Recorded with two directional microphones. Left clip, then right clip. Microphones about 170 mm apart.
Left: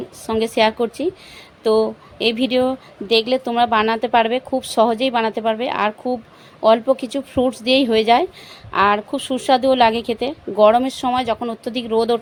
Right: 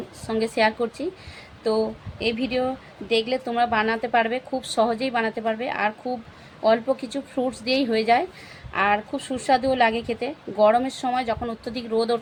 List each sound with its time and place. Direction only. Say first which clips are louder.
0.3 s a woman's voice: left 5 dB; 50° left (ahead or behind)